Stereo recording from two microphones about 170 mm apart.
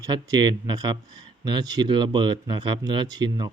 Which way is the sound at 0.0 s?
25° right (ahead or behind).